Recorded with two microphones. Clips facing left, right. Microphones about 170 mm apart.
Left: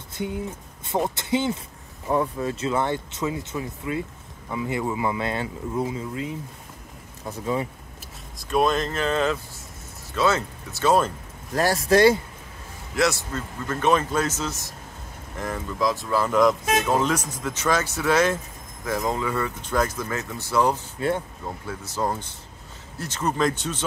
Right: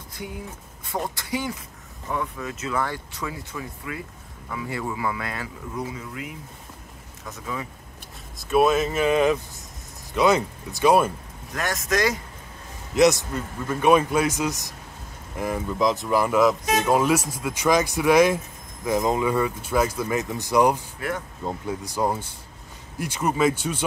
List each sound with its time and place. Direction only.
0.8 s speech: 25° left (ahead or behind)
8.4 s speech: 5° right (ahead or behind)
11.5 s speech: 35° left (ahead or behind)
12.9 s speech: 20° right (ahead or behind)